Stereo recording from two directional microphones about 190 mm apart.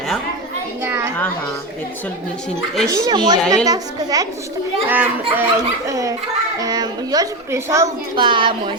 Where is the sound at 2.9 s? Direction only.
20° right (ahead or behind).